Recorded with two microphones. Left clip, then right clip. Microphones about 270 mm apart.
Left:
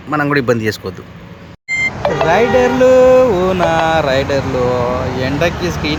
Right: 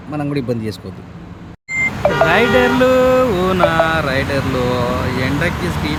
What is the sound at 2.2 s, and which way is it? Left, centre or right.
Music, centre.